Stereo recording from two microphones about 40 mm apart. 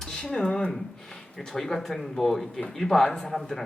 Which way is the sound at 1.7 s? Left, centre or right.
Centre.